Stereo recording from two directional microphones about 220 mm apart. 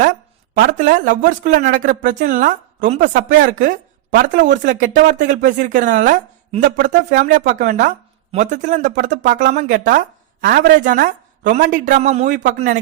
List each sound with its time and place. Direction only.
0.5 s speech: 40° right (ahead or behind)